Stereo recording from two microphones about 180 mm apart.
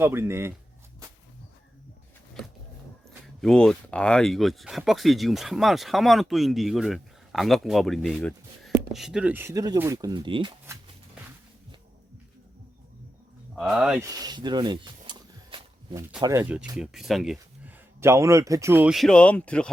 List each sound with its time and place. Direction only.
0.0 s speech: 15° right (ahead or behind)
3.4 s speech: 5° left (ahead or behind); by 10.5 s 25° right (ahead or behind)
13.6 s speech: 5° right (ahead or behind)
14.0 s a sound: 20° right (ahead or behind)
16.2 s speech: 15° right (ahead or behind)
18.0 s speech: 15° right (ahead or behind); by 19.7 s 5° left (ahead or behind)